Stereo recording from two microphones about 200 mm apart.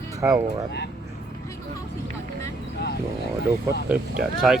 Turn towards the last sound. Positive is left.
turn(degrees=-5)  # may be behind; listen again after turning